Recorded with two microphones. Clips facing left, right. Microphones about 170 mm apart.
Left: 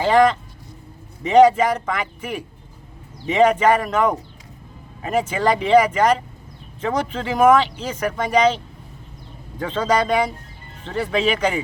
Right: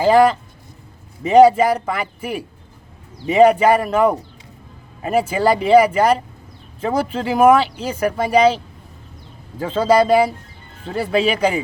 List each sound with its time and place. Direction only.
0.0 s speech: 10° right (ahead or behind)
1.2 s a man's voice: 35° right (ahead or behind)
1.5 s speech: 10° right (ahead or behind)
3.2 s speech: 10° right (ahead or behind)